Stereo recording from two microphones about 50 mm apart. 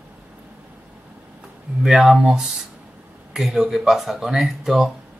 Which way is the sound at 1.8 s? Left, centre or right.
Centre.